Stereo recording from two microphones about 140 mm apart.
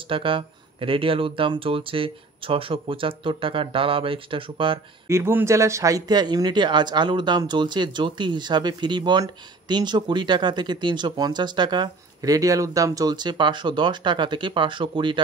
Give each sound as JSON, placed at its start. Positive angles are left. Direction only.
{"t": 0.1, "sound": "speech", "side_deg": -40}
{"t": 5.0, "sound": "speech", "side_deg": -20}